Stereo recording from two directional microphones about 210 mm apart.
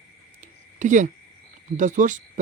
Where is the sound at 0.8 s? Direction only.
35° right (ahead or behind).